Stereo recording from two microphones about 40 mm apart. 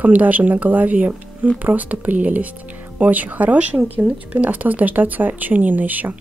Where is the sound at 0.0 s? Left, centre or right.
Right.